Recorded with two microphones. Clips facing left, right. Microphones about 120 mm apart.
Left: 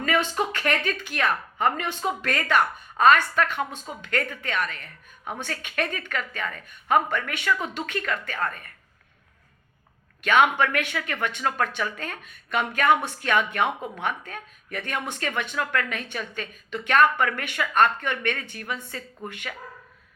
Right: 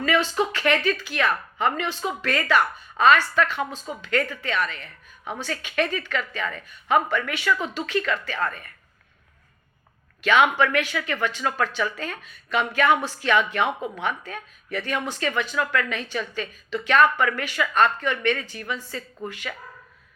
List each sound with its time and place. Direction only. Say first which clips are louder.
0.0 s a woman's voice: right 2 dB; 45° left (ahead or behind)
10.6 s a woman's voice: right 2 dB; 50° left (ahead or behind)